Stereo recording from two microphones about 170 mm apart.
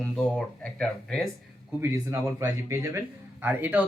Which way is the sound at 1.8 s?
15° right (ahead or behind).